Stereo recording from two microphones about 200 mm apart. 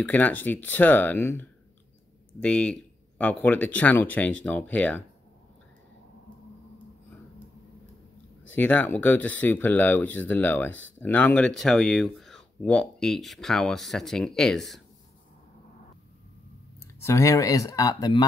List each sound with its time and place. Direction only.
0.0 s speech: 10° left (ahead or behind)
8.5 s speech: 10° left (ahead or behind)
16.8 s speech: 15° left (ahead or behind)